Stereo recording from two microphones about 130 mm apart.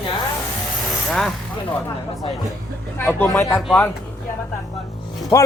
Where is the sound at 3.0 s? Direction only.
15° left (ahead or behind).